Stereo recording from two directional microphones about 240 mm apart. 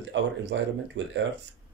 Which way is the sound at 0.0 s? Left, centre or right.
Right.